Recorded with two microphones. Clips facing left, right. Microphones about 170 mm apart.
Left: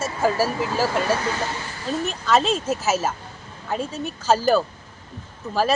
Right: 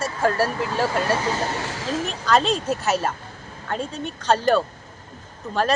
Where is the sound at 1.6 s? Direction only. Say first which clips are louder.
Right 1 dB; 90° right.